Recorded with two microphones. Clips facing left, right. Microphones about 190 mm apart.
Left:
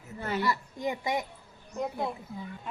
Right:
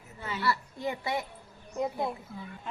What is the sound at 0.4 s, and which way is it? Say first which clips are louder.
Speech: right 4 dB; 15° left (ahead or behind).